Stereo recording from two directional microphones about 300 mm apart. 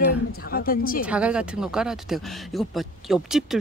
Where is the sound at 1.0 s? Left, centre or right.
Centre.